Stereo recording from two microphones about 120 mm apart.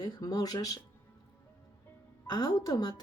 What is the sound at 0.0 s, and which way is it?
Speech, 30° left (ahead or behind).